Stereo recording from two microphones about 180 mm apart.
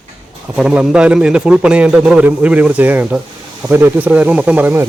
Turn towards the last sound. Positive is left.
turn(degrees=-10)  # may be behind; listen again after turning